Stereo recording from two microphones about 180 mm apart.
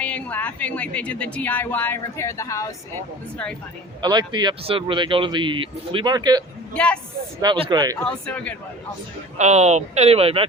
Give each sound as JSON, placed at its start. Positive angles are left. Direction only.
{"t": 0.0, "sound": "a woman's voice", "side_deg": 10}
{"t": 4.0, "sound": "speech", "side_deg": -25}
{"t": 6.7, "sound": "speech", "side_deg": 5}
{"t": 7.4, "sound": "speech", "side_deg": -25}
{"t": 7.9, "sound": "speech", "side_deg": 5}
{"t": 9.4, "sound": "speech", "side_deg": -40}